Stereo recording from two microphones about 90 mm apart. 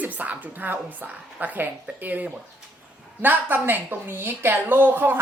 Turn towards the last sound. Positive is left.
turn(degrees=-20)  # may be behind; listen again after turning